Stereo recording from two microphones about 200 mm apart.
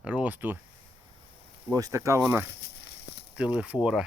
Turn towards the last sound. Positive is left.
turn(degrees=-5)  # may be behind; listen again after turning